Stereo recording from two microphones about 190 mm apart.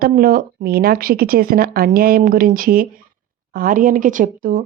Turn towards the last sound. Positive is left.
turn(degrees=-45)  # may be behind; listen again after turning